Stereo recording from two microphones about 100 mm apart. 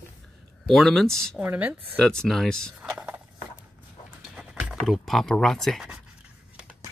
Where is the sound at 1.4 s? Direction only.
20° right (ahead or behind).